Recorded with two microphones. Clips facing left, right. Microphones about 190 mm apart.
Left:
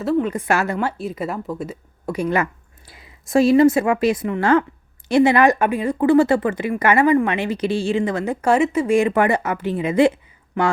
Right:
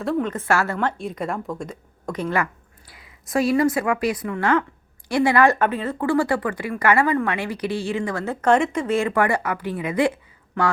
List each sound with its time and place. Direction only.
0.0 s speech: 5° left (ahead or behind); by 10.1 s 25° left (ahead or behind)